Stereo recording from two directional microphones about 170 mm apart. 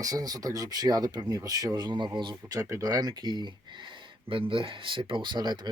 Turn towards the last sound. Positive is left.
turn(degrees=-25)  # may be behind; listen again after turning